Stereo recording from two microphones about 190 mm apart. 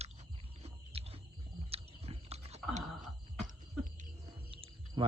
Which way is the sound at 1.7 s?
30° right (ahead or behind).